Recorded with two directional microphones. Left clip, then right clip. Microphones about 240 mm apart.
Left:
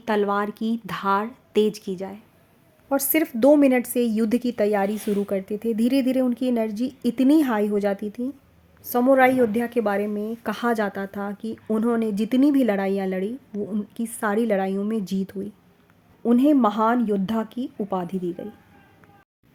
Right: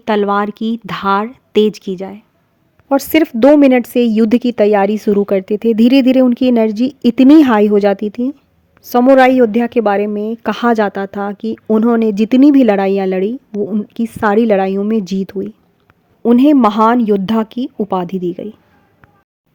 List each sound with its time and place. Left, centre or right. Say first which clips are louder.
0.0 s a woman's voice: right 9 dB; right